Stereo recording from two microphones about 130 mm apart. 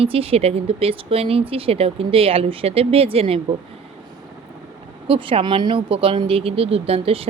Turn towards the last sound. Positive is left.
turn(degrees=-50)  # may be behind; listen again after turning